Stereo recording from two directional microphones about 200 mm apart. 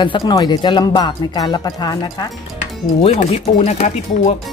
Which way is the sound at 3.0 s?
30° left (ahead or behind).